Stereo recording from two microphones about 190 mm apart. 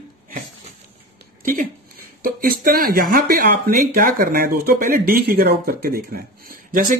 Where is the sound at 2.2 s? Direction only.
50° right (ahead or behind).